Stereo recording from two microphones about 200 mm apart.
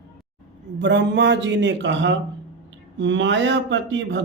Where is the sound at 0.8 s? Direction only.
60° right (ahead or behind).